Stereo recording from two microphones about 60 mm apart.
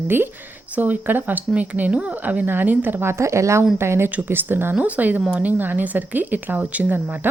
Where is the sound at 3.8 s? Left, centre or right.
Right.